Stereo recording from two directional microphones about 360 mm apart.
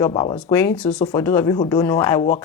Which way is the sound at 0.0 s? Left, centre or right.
Centre.